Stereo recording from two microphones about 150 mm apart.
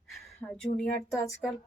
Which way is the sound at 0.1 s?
5° left (ahead or behind).